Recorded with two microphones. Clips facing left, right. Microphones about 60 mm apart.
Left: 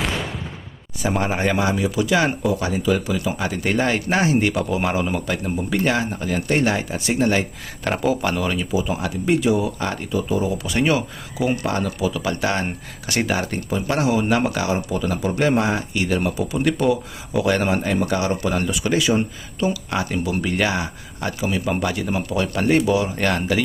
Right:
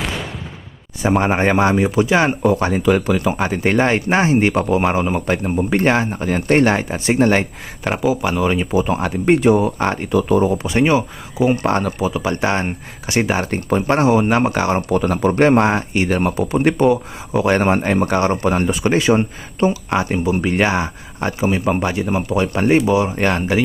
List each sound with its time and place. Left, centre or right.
0.0 s a sound: centre
1.0 s speech: right
2.4 s speech: right
7.9 s speech: centre
8.7 s speech: right
10.1 s speech: right
10.5 s speech: right
11.6 s speech: right
13.7 s speech: right
13.9 s speech: right